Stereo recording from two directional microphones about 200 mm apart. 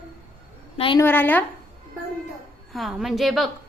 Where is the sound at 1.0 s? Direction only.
10° left (ahead or behind).